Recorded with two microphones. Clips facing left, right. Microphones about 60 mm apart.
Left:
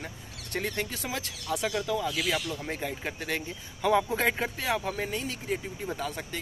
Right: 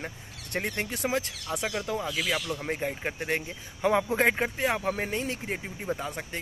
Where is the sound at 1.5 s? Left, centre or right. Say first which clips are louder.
Left 2 dB; centre; by 5.7 s right.